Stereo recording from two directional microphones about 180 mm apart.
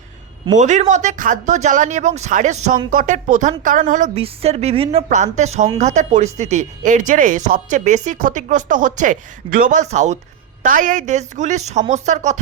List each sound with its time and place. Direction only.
0.5 s speech: 40° right (ahead or behind)